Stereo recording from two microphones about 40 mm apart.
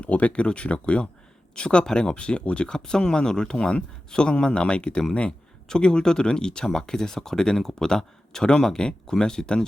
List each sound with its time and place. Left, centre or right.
0.0 s speech: left; by 9.6 s centre